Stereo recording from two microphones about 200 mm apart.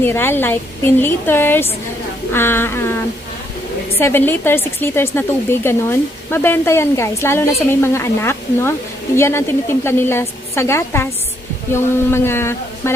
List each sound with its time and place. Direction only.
0.0 s a woman's voice: 10° left (ahead or behind)